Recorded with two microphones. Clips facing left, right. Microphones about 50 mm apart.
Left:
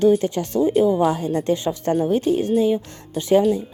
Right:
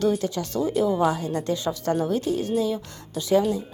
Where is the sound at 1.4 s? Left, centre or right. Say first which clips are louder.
Left 4 dB; left.